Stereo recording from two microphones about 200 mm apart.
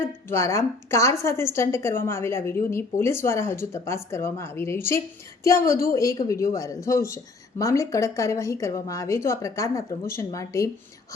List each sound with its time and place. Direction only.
0.3 s speech: 15° left (ahead or behind)